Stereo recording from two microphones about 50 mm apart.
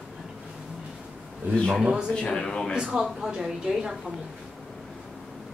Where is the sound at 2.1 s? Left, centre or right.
Centre.